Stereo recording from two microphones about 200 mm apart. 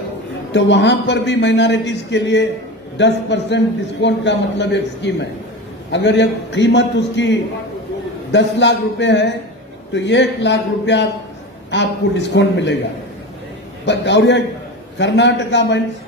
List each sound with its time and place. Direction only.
0.5 s a man's voice: 60° left (ahead or behind)
13.8 s a man's voice: 60° left (ahead or behind)